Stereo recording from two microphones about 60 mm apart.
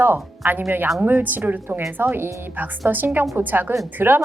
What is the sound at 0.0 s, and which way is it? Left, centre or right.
A woman's voice, right.